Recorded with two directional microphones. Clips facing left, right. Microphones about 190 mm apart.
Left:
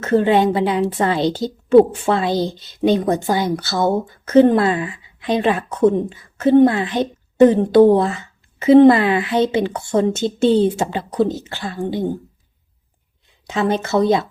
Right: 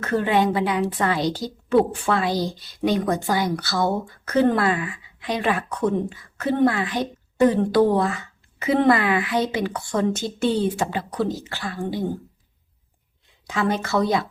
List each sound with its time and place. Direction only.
0.0 s a woman's voice: 25° left (ahead or behind)
13.5 s a woman's voice: 25° left (ahead or behind)